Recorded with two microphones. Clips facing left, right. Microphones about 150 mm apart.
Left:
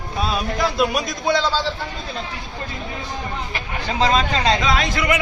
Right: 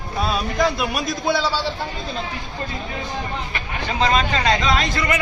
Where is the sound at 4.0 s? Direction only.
25° left (ahead or behind).